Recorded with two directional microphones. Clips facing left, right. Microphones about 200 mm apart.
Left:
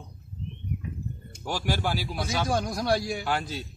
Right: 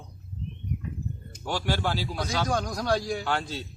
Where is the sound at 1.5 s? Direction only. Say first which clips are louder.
Even; 10° left (ahead or behind).